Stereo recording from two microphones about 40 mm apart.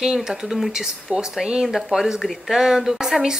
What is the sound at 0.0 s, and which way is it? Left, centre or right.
A woman's voice, centre.